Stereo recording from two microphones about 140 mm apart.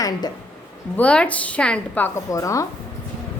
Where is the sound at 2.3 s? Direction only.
25° left (ahead or behind).